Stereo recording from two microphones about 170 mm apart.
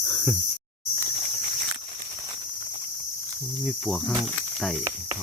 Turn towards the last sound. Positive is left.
turn(degrees=0)  # may be behind; listen again after turning